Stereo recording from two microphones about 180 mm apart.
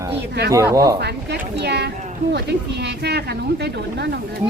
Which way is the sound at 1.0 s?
70° right (ahead or behind).